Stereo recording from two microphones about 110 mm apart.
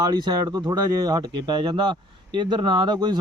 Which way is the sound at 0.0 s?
40° right (ahead or behind).